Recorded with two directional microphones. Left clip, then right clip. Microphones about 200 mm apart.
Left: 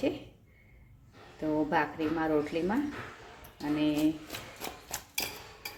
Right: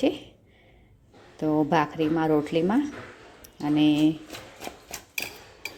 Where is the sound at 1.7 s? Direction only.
40° right (ahead or behind).